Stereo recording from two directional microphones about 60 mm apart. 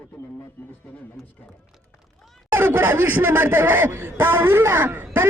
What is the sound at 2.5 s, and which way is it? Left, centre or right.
Speech, right.